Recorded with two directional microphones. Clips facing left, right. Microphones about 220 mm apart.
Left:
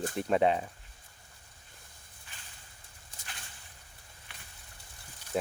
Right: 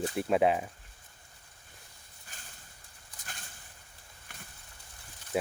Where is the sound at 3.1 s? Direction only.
25° left (ahead or behind).